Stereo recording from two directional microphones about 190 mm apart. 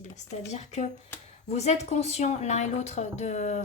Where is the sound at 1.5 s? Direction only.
35° left (ahead or behind).